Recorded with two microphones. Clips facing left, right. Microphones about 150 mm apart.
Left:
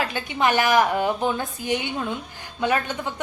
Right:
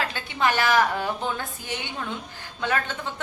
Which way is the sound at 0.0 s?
15° left (ahead or behind).